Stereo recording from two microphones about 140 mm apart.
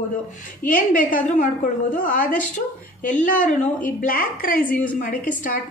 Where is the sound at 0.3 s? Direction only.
70° left (ahead or behind).